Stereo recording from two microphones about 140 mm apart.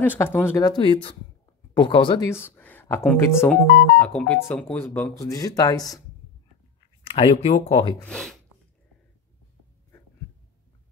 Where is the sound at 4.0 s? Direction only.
10° left (ahead or behind); by 5.9 s 25° left (ahead or behind).